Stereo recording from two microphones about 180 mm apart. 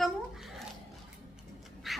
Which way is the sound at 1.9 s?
Centre (ahead or behind).